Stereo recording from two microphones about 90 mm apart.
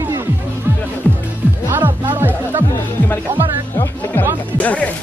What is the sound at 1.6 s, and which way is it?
Music, 25° right (ahead or behind).